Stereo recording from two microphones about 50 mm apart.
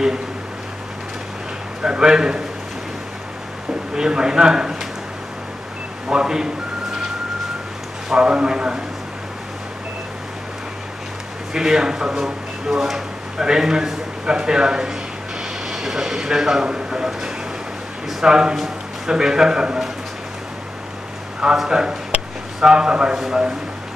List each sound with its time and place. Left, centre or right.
1.8 s a man's voice: centre
3.9 s a man's voice: centre
6.0 s a man's voice: centre
8.1 s a man's voice: centre
11.5 s a man's voice: centre
18.2 s a man's voice: centre
21.5 s a man's voice: centre